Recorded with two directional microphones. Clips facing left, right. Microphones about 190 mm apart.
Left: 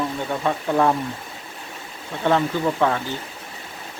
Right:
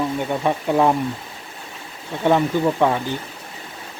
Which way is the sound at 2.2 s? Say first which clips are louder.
Right 3 dB; 15° right (ahead or behind).